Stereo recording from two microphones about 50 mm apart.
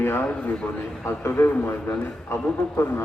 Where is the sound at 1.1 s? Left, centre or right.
Left.